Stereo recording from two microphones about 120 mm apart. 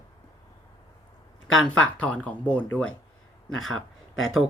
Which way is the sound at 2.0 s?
10° left (ahead or behind).